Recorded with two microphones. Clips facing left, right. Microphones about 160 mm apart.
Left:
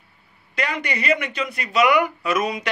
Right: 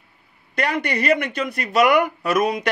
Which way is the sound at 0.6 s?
55° right (ahead or behind).